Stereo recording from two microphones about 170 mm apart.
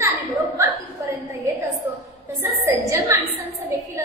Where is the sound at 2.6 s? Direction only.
10° right (ahead or behind).